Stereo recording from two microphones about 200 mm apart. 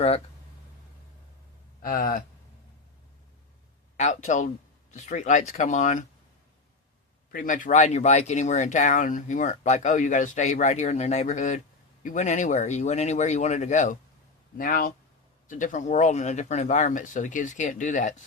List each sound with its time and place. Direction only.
1.8 s speech: 45° left (ahead or behind)
3.9 s speech: 35° left (ahead or behind)
7.3 s speech: 40° left (ahead or behind)